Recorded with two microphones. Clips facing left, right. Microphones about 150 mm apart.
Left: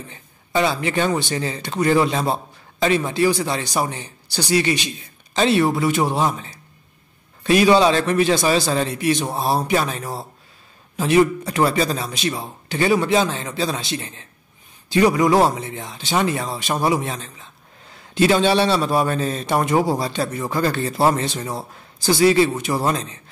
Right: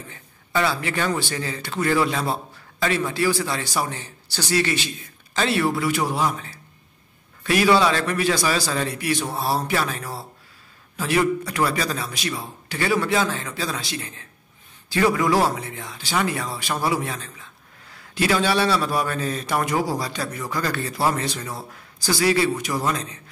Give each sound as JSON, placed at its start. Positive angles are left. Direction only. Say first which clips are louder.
{"t": 0.1, "sound": "speech", "louder": "left 3 dB", "side_deg": 20}